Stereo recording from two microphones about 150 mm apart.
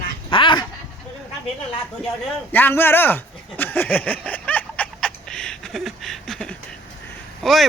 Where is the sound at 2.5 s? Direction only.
15° left (ahead or behind).